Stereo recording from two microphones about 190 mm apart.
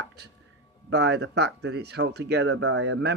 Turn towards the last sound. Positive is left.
turn(degrees=-70)  # may be behind; listen again after turning